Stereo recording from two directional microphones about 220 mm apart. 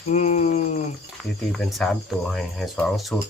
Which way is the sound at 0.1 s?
30° left (ahead or behind).